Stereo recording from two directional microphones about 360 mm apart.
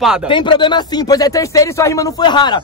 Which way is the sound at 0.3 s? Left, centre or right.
Centre.